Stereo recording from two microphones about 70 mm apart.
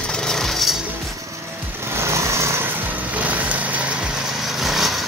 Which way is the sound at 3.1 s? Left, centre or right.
Right.